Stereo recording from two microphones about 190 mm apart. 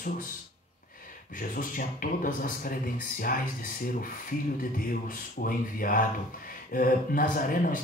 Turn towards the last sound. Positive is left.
turn(degrees=45)  # may be behind; listen again after turning